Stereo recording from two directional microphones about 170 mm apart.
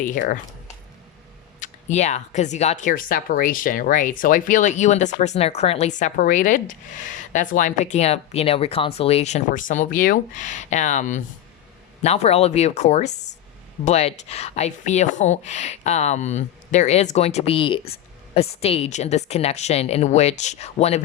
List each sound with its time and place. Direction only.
0.0 s speech: 50° left (ahead or behind)
1.5 s speech: 45° left (ahead or behind)